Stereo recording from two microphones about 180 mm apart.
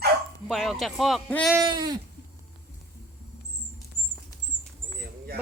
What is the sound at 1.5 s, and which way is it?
Sheep, 20° right (ahead or behind).